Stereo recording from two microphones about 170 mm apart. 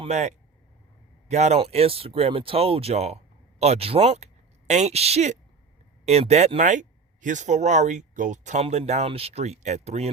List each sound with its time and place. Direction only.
0.0 s speech: 40° right (ahead or behind)